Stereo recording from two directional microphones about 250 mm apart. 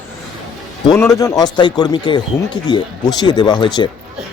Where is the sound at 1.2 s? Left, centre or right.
Centre.